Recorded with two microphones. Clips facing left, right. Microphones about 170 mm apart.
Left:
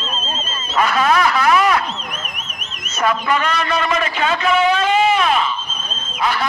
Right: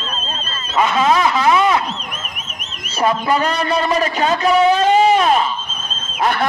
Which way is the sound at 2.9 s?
30° right (ahead or behind).